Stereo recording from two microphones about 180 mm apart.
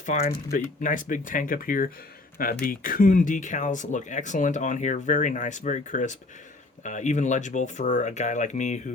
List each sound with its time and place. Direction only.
0.0 s speech: 45° left (ahead or behind)